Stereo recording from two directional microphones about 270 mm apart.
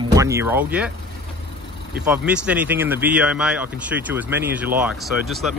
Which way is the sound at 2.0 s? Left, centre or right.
Centre.